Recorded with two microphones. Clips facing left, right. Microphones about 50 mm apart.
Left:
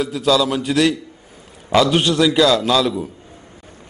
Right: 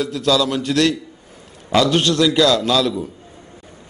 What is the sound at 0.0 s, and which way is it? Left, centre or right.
A man's voice, centre.